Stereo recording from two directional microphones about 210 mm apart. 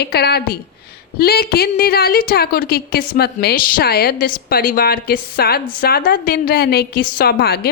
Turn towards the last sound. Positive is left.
turn(degrees=50)  # may be behind; listen again after turning